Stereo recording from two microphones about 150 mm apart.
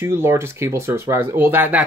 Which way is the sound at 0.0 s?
15° right (ahead or behind).